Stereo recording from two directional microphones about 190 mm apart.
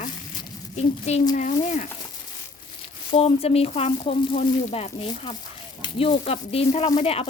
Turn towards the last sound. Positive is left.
turn(degrees=30)  # may be behind; listen again after turning